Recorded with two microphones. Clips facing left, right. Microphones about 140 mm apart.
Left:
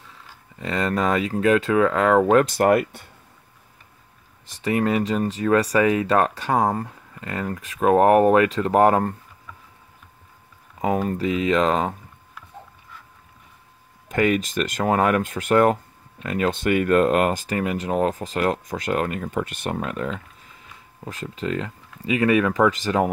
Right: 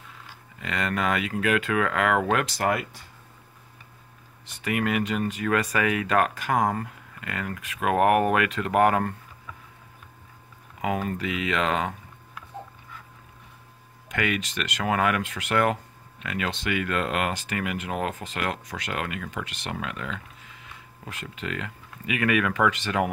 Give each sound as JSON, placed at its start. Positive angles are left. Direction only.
{"t": 0.6, "sound": "speech", "side_deg": 35}
{"t": 2.3, "sound": "speech", "side_deg": 50}
{"t": 4.5, "sound": "speech", "side_deg": 35}
{"t": 10.8, "sound": "speech", "side_deg": 35}
{"t": 14.1, "sound": "speech", "side_deg": 40}